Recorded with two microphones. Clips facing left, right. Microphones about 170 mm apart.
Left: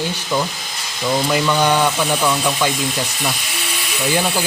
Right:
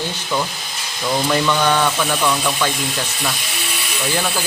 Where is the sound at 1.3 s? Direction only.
10° left (ahead or behind).